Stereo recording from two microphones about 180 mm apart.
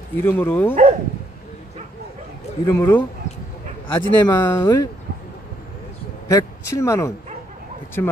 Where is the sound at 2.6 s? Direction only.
15° left (ahead or behind).